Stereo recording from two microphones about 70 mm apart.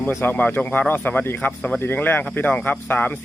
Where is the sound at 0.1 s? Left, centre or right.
Left.